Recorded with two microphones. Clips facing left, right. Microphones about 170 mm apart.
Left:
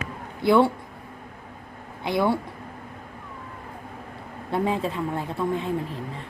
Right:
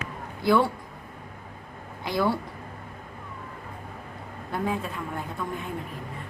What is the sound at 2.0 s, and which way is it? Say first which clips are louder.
Speech: left 3 dB; 20° left (ahead or behind).